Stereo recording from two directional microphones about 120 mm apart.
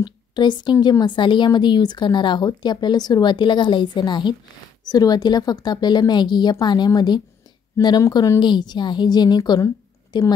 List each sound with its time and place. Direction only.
0.0 s a woman's voice: 40° left (ahead or behind)